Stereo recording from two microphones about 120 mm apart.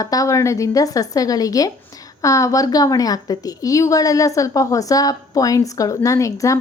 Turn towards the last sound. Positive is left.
turn(degrees=25)  # may be behind; listen again after turning